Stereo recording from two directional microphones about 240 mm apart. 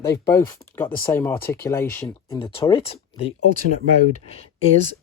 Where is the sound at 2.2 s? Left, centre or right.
Left.